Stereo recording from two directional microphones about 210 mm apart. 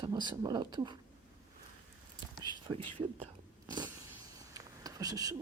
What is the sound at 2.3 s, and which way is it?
Whispering, 20° right (ahead or behind).